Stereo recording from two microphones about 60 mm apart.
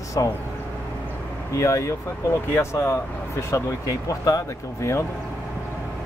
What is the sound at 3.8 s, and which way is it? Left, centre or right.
A man's voice, left.